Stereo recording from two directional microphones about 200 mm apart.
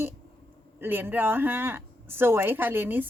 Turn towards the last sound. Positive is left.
turn(degrees=-10)  # may be behind; listen again after turning